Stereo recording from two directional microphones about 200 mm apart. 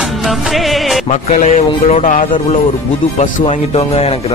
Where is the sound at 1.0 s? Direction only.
35° left (ahead or behind).